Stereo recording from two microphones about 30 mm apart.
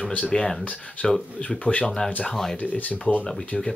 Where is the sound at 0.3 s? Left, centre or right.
Left.